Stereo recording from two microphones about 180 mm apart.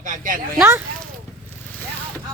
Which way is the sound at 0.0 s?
45° right (ahead or behind).